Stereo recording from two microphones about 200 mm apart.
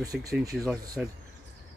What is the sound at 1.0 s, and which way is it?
Speech, 5° right (ahead or behind).